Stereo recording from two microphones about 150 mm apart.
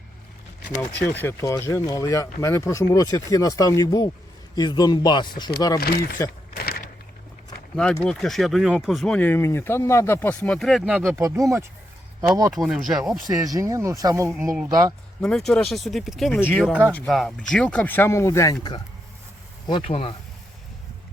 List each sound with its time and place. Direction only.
0.8 s speech: 10° left (ahead or behind)
5.8 s speech: 90° left
6.6 s a sound: 90° left
7.8 s speech: 5° left (ahead or behind)
11.2 s speech: 20° right (ahead or behind)
12.5 s speech: 5° right (ahead or behind)
13.2 s speech: 25° right (ahead or behind)
15.2 s speech: 5° left (ahead or behind); by 18.5 s 20° left (ahead or behind)
19.6 s speech: 35° left (ahead or behind)